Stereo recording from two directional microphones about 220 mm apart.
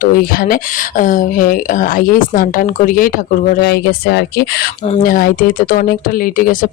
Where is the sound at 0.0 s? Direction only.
40° left (ahead or behind).